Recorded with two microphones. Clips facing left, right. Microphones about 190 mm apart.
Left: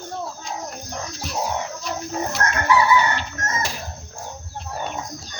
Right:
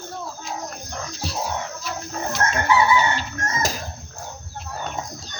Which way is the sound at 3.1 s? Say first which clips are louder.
Even; 40° right (ahead or behind).